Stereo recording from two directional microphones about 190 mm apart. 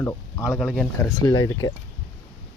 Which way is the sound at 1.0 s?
20° left (ahead or behind).